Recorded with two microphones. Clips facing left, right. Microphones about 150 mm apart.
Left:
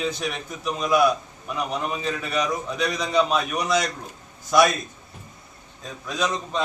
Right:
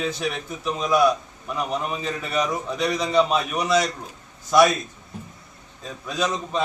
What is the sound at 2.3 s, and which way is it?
A man's voice, centre (ahead or behind).